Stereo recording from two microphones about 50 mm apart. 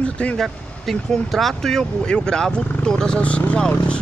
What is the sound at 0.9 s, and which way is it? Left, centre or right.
Speech, centre.